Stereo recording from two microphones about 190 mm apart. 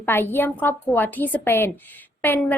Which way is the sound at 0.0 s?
10° left (ahead or behind).